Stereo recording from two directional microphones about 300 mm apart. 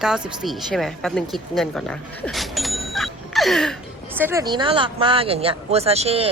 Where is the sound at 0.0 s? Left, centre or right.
Centre.